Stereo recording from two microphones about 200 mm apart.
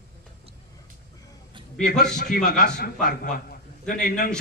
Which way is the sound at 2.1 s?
40° left (ahead or behind).